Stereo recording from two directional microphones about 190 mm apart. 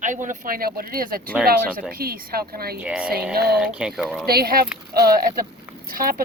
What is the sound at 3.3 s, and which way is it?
Speech, 60° right (ahead or behind).